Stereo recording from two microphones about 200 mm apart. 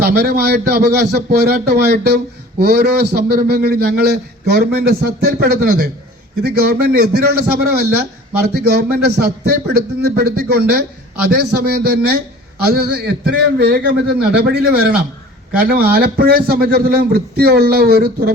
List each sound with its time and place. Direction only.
0.0 s a man's voice: 50° right (ahead or behind)